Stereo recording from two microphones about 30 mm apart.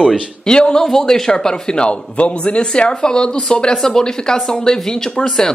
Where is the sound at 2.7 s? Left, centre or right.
Left.